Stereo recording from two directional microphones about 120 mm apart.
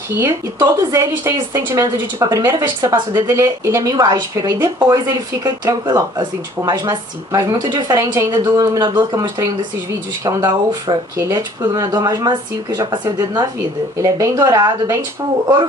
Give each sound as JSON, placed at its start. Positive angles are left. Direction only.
{"t": 0.1, "sound": "a woman's voice", "side_deg": -25}
{"t": 11.1, "sound": "speech", "side_deg": -25}